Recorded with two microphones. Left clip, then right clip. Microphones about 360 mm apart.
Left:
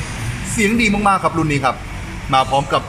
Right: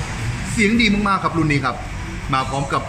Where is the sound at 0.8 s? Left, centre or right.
Centre.